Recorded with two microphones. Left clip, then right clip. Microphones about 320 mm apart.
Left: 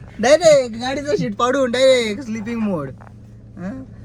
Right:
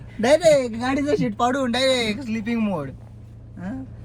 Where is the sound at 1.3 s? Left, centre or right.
Centre.